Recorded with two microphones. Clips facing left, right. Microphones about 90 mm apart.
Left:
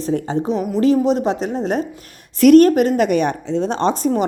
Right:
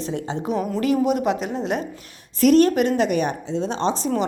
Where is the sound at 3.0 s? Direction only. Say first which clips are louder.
Left 4 dB; 70° left (ahead or behind).